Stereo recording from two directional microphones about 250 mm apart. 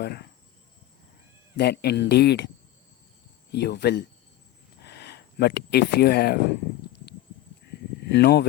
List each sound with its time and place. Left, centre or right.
0.0 s speech: left
1.5 s speech: left
3.5 s speech: left
8.0 s speech: left